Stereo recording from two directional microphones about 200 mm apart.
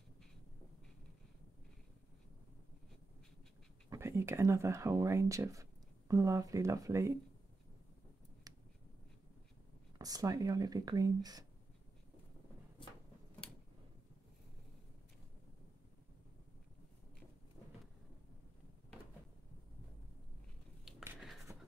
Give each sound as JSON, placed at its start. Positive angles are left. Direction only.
{"t": 3.9, "sound": "speech", "side_deg": -15}
{"t": 9.9, "sound": "speech", "side_deg": -20}
{"t": 21.2, "sound": "a sound", "side_deg": 0}